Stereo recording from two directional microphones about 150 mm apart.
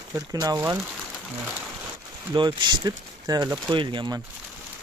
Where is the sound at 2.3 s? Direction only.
30° right (ahead or behind).